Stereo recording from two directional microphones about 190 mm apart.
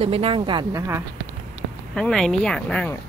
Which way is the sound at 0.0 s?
30° right (ahead or behind).